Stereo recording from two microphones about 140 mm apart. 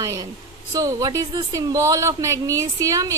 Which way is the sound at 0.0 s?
20° right (ahead or behind).